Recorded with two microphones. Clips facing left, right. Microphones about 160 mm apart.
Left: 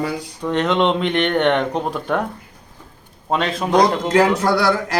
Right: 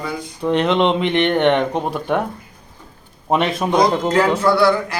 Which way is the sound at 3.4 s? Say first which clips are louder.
Right 2 dB; 20° right (ahead or behind).